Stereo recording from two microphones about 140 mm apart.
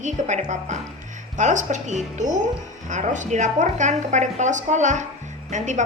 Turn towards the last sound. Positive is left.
turn(degrees=-60)  # may be behind; listen again after turning